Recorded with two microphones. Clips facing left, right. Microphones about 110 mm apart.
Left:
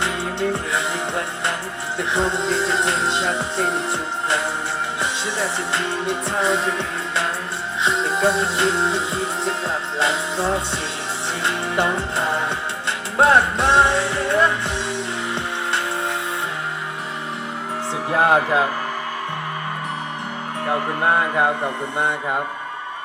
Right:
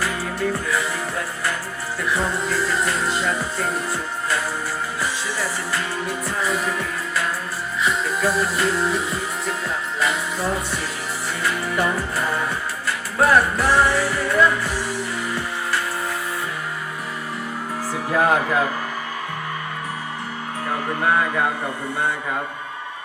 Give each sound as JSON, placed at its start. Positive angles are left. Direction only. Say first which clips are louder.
{"t": 0.0, "sound": "music", "louder": "left 1 dB", "side_deg": 25}
{"t": 4.9, "sound": "music", "louder": "left 2 dB", "side_deg": 25}
{"t": 18.1, "sound": "music", "louder": "left 1 dB", "side_deg": 25}
{"t": 20.7, "sound": "music", "louder": "left 2 dB", "side_deg": 25}